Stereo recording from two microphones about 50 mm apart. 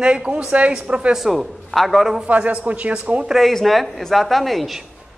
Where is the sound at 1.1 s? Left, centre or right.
Centre.